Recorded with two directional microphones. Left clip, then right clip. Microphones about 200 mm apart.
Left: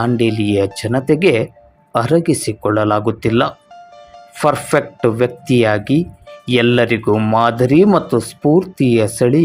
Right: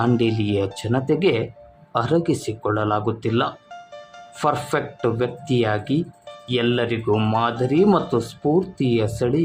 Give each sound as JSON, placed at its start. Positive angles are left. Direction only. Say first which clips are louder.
{"t": 0.0, "sound": "speech", "louder": "left 5 dB", "side_deg": 15}